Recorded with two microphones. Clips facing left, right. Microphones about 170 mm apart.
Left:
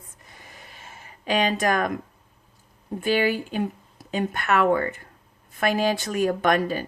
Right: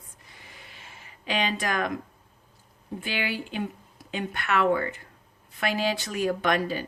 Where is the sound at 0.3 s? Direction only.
45° left (ahead or behind).